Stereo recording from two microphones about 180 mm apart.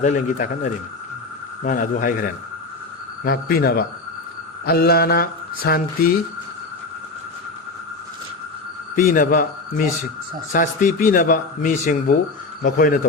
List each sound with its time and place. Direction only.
0.0 s speech: 45° left (ahead or behind)
9.0 s speech: 50° left (ahead or behind)